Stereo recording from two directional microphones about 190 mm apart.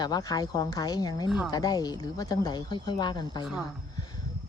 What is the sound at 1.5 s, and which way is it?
Speech, 20° left (ahead or behind).